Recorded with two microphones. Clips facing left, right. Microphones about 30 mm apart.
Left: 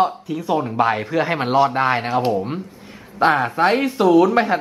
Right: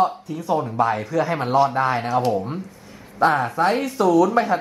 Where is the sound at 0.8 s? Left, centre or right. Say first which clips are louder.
Left 3 dB; left.